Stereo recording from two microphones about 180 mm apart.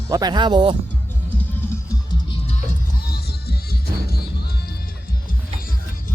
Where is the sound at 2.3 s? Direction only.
35° left (ahead or behind).